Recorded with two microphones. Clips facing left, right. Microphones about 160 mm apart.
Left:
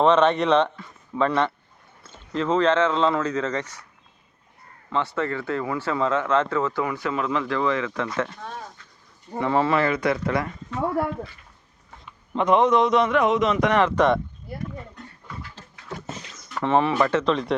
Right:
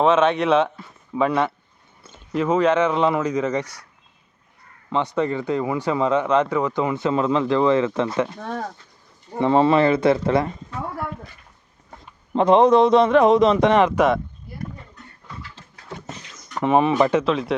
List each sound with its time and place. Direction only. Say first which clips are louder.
0.0 s speech: right 1 dB; 5° right (ahead or behind)
4.9 s speech: right 4 dB; 20° right (ahead or behind)
8.4 s speech: right 7 dB; 70° right (ahead or behind)
9.4 s speech: right 5 dB; 25° right (ahead or behind)
12.3 s a man's voice: right 4 dB; 35° right (ahead or behind)
13.8 s speech: right 2 dB; 10° right (ahead or behind)
16.6 s speech: right 3 dB; 15° right (ahead or behind)